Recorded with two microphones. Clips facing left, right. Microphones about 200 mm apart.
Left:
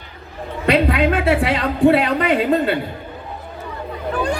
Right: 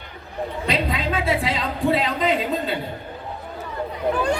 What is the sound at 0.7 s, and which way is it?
A man's voice, 65° left (ahead or behind).